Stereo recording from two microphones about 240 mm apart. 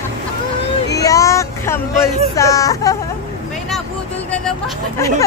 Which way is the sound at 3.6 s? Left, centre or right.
Centre.